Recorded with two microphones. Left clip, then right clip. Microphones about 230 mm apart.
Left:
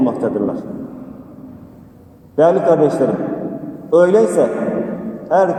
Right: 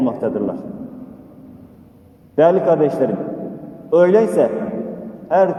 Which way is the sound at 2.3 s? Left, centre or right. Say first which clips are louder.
Left 1 dB; right.